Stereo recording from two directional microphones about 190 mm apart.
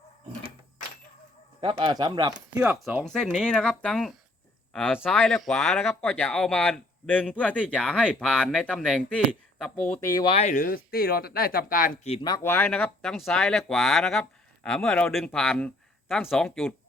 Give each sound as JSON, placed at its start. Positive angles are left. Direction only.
{"t": 1.6, "sound": "a man's voice", "side_deg": -25}
{"t": 2.6, "sound": "speech", "side_deg": -5}
{"t": 10.0, "sound": "speech", "side_deg": 15}
{"t": 10.2, "sound": "speech", "side_deg": 35}
{"t": 12.2, "sound": "speech", "side_deg": 15}